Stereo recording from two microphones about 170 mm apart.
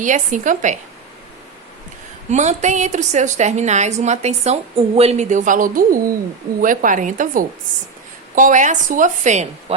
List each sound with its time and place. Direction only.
0.0 s a woman's voice: 50° right (ahead or behind)
2.3 s a woman's voice: 45° right (ahead or behind)